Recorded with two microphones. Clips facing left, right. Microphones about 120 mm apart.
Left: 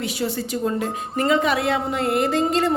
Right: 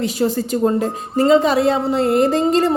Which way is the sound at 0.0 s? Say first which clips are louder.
Right 6 dB; 40° right (ahead or behind).